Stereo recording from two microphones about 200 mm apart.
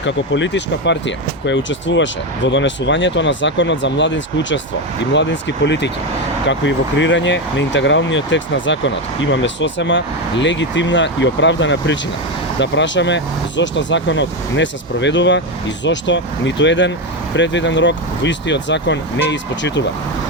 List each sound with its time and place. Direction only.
0.0 s speech: 65° left (ahead or behind)